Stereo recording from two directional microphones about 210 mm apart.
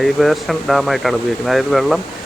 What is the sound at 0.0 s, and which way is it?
Speech, centre (ahead or behind).